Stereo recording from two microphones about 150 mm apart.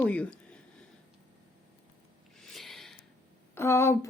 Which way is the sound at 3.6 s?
15° left (ahead or behind).